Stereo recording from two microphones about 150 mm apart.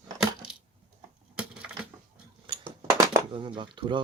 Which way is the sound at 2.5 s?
35° right (ahead or behind).